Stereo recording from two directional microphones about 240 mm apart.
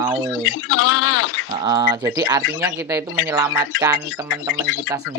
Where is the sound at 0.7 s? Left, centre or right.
Left.